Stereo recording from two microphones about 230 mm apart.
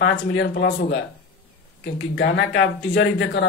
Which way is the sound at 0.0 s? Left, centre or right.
Left.